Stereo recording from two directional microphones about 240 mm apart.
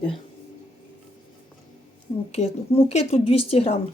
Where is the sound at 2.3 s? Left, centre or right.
Left.